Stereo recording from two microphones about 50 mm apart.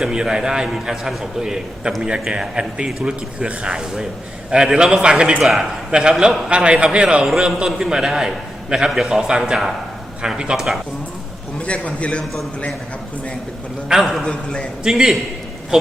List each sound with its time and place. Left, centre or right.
0.0 s a man's voice: centre
5.4 s a man's voice: centre
5.9 s a man's voice: centre
7.5 s a man's voice: centre
11.6 s a man's voice: left
13.8 s a man's voice: centre
14.3 s a man's voice: left
14.8 s a man's voice: centre